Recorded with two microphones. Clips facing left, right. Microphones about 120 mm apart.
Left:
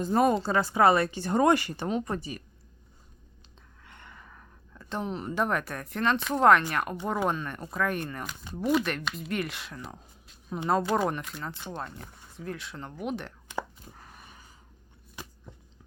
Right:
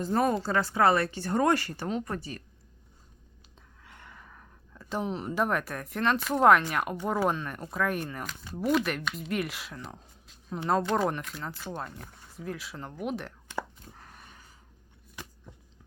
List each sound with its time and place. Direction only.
0.0 s speech: 15° left (ahead or behind)
3.8 s speech: 5° right (ahead or behind)
13.5 s chopping: 15° left (ahead or behind)
13.9 s a sound: 5° left (ahead or behind)